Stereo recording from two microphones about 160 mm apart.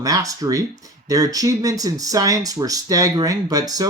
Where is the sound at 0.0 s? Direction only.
20° right (ahead or behind).